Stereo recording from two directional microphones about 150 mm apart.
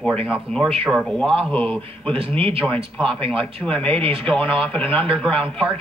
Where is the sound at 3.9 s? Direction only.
40° right (ahead or behind).